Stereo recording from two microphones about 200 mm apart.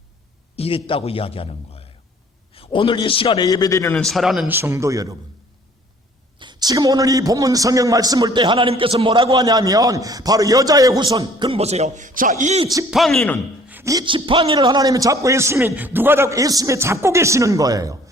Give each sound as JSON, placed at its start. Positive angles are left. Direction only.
{"t": 0.5, "sound": "a sound", "side_deg": 30}
{"t": 0.9, "sound": "a man's voice", "side_deg": 30}
{"t": 4.0, "sound": "a man's voice", "side_deg": 0}
{"t": 6.4, "sound": "a man's voice", "side_deg": -20}
{"t": 12.9, "sound": "speech", "side_deg": 0}
{"t": 13.7, "sound": "a man's voice", "side_deg": -10}